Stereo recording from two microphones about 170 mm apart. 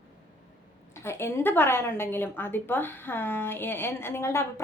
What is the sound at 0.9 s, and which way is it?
A woman's voice, 15° left (ahead or behind).